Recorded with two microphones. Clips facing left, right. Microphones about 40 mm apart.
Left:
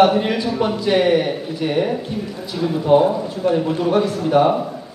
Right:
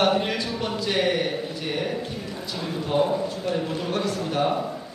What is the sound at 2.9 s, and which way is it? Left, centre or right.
A man's voice, centre.